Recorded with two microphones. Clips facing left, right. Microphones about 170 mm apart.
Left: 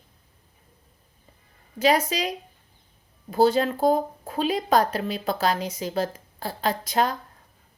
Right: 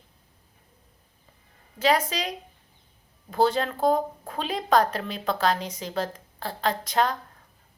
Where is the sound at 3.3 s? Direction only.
10° left (ahead or behind).